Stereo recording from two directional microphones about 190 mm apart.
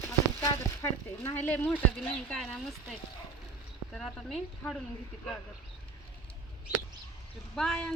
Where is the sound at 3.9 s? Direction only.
Centre (ahead or behind).